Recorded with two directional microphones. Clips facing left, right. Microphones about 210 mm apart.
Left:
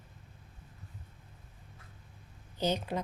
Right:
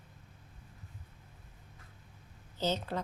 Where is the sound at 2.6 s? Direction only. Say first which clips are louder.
Left 2 dB; 15° left (ahead or behind).